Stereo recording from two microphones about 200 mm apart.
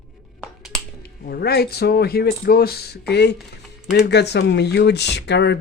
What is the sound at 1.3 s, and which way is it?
Speech, 50° left (ahead or behind).